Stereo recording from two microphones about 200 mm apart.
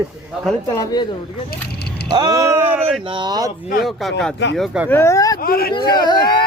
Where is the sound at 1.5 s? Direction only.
50° left (ahead or behind).